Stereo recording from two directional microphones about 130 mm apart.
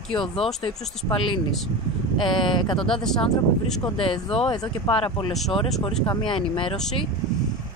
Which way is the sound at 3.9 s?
40° left (ahead or behind).